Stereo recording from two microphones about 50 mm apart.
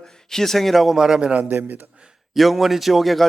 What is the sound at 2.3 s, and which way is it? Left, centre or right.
Speech, centre.